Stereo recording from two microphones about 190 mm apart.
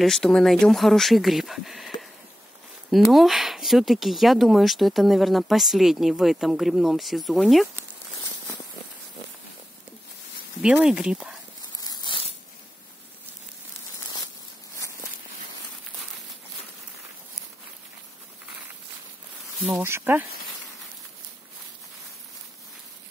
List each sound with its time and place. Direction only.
0.0 s speech: centre (ahead or behind)
2.9 s speech: centre (ahead or behind)
10.6 s speech: 5° right (ahead or behind)
11.8 s crushing: 20° left (ahead or behind)
19.6 s speech: 10° right (ahead or behind)